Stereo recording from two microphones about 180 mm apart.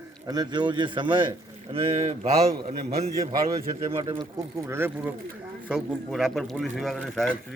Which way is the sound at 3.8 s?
30° right (ahead or behind).